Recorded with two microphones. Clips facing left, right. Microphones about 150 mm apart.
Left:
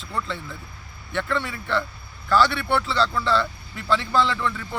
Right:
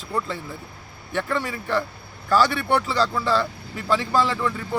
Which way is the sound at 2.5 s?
45° right (ahead or behind).